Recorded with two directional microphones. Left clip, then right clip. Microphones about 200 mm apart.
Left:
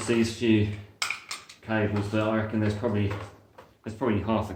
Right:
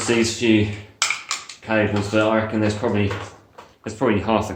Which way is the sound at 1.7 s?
30° right (ahead or behind).